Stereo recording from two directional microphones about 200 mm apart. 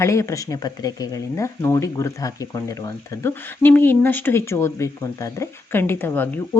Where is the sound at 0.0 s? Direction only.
15° left (ahead or behind).